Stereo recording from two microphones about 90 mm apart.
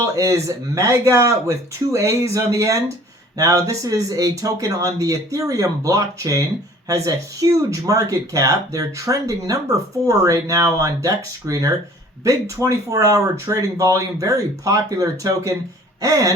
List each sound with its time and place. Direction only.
0.0 s speech: 40° right (ahead or behind)